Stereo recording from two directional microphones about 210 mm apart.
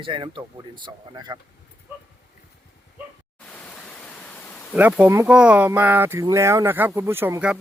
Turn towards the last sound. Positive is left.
turn(degrees=-10)  # may be behind; listen again after turning